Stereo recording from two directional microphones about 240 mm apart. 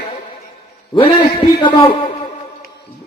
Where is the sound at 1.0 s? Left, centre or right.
Left.